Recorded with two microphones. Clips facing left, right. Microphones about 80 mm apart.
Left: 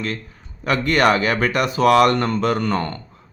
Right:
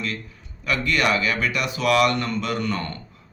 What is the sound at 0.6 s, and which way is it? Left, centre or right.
Speech, left.